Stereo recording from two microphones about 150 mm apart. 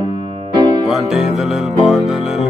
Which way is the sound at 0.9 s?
Centre (ahead or behind).